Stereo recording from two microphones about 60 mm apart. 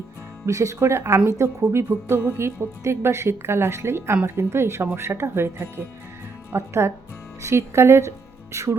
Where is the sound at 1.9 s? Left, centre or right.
Right.